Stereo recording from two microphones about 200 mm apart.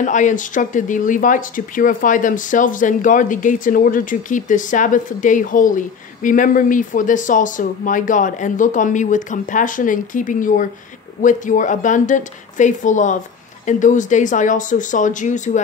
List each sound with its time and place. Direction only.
0.0 s speech: 40° left (ahead or behind)